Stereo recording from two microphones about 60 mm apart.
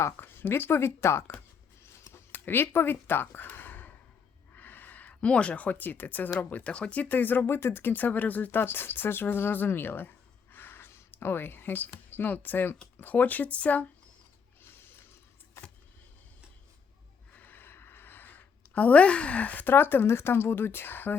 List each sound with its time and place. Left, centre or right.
0.0 s speech: left
2.1 s a sound: left
4.5 s speech: left
10.5 s a sound: left
13.0 s speech: left
17.3 s a woman's voice: left